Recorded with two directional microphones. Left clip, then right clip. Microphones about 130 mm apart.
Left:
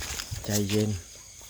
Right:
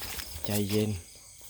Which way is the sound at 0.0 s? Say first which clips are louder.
Left 4 dB; 10° right (ahead or behind).